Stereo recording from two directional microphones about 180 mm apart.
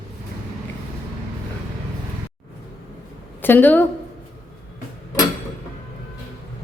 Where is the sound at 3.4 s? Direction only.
10° left (ahead or behind).